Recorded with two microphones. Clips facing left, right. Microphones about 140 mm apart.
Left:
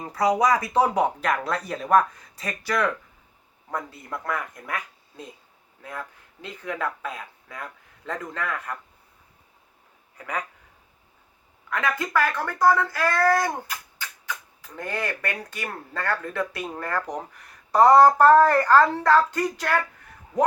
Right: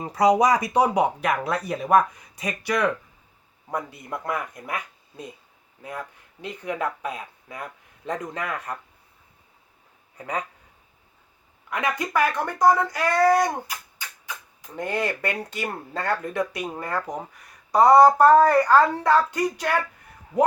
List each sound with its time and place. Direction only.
0.0 s speech: 20° right (ahead or behind)
10.2 s speech: 25° right (ahead or behind)
11.7 s speech: 15° right (ahead or behind)